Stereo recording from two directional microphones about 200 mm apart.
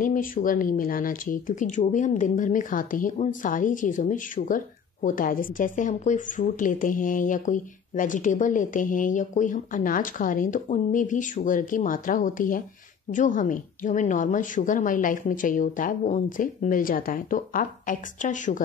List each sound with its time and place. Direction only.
0.0 s speech: 45° left (ahead or behind)